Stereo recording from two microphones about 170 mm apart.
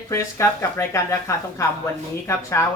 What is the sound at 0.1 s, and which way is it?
Speech, 15° left (ahead or behind).